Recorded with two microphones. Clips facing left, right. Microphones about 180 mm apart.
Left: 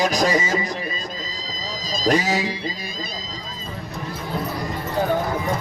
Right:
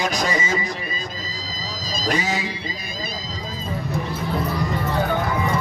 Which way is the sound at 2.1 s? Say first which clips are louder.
Left 4 dB; 40° left (ahead or behind).